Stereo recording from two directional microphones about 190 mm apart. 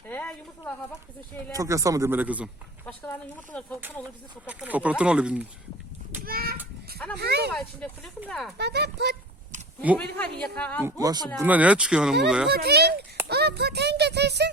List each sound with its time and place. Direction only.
0.1 s a sound: 10° left (ahead or behind)
1.5 s speech: 15° right (ahead or behind)
2.8 s a woman's voice: 10° left (ahead or behind)
3.8 s speech: 10° right (ahead or behind)
6.2 s a child's voice: 50° right (ahead or behind)
7.5 s speech: centre (ahead or behind)
8.5 s speech: 60° right (ahead or behind)
10.0 s a woman's voice: 5° left (ahead or behind)
10.8 s speech: 20° right (ahead or behind)
11.3 s speech: 10° right (ahead or behind)
12.5 s speech: 55° right (ahead or behind)